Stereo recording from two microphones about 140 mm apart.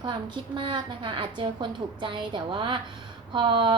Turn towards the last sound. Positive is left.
turn(degrees=-35)  # may be behind; listen again after turning